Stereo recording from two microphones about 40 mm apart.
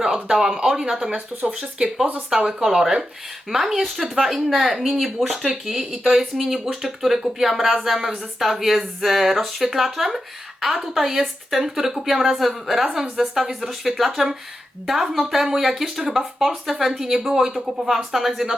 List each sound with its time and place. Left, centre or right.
0.0 s speech: centre
1.1 s speech: right
1.5 s speech: centre